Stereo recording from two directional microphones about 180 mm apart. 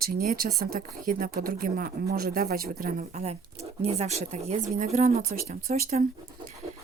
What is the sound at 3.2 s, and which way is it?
Speech, 35° right (ahead or behind).